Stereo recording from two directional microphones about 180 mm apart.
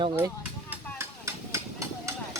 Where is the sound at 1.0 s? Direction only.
15° right (ahead or behind).